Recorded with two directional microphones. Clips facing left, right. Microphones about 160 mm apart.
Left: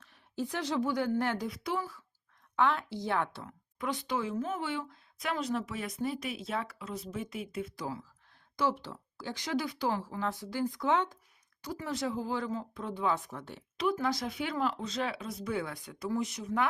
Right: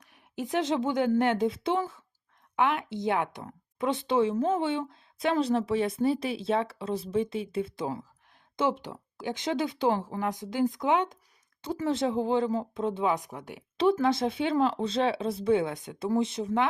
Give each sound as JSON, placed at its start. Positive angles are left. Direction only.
{"t": 0.0, "sound": "a woman's voice", "side_deg": -15}
{"t": 13.7, "sound": "speech", "side_deg": -25}